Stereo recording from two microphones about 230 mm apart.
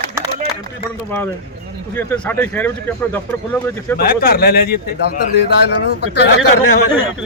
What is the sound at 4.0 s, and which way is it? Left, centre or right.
A man's voice, left.